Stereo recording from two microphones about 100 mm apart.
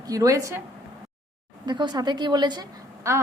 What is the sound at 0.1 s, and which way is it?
Speech, 35° right (ahead or behind).